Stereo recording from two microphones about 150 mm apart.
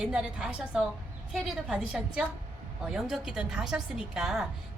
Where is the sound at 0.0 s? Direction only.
5° right (ahead or behind).